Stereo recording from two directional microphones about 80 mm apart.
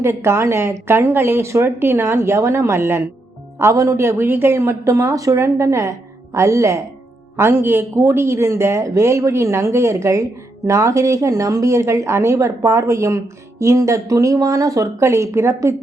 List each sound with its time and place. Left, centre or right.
0.0 s a woman's voice: right